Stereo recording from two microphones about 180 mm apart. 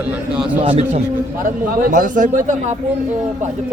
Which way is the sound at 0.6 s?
35° right (ahead or behind).